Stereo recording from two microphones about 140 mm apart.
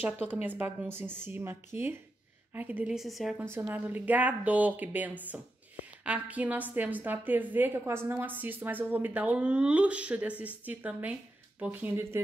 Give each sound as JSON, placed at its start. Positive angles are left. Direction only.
{"t": 0.0, "sound": "a woman's voice", "side_deg": -10}
{"t": 3.3, "sound": "a woman's voice", "side_deg": -15}